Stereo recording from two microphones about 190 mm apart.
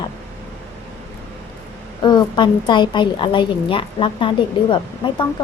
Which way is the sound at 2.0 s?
25° left (ahead or behind).